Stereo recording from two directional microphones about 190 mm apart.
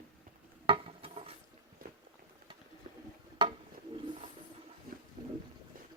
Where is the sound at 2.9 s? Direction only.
45° right (ahead or behind).